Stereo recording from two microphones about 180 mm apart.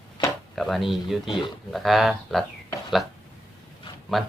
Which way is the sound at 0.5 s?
Centre (ahead or behind).